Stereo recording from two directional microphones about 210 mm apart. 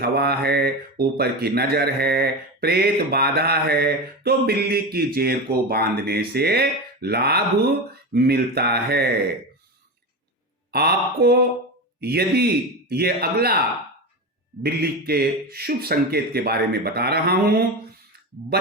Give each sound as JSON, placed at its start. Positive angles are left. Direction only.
{"t": 0.0, "sound": "speech", "side_deg": -50}
{"t": 10.7, "sound": "speech", "side_deg": -50}